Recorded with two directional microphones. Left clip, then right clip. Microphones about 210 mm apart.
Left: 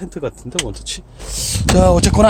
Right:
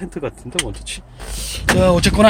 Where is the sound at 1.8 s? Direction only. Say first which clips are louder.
Left 3 dB; 20° left (ahead or behind).